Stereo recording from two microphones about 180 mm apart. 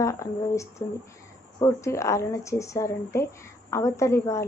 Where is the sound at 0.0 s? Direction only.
15° left (ahead or behind).